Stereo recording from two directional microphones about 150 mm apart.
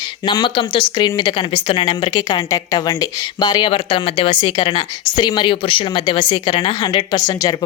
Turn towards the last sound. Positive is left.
turn(degrees=25)  # may be behind; listen again after turning